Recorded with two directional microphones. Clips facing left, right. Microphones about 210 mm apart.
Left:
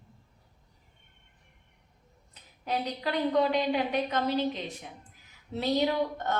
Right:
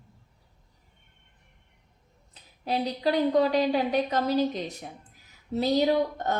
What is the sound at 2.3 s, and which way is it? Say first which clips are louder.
Speech: right 3 dB; 35° right (ahead or behind).